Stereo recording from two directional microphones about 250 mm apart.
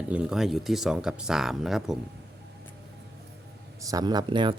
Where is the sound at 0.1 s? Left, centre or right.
Centre.